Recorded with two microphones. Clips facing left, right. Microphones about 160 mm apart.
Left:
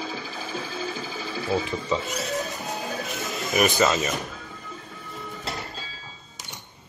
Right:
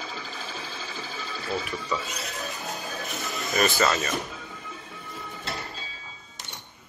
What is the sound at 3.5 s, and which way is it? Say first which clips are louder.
Speech: left 3 dB; 15° left (ahead or behind).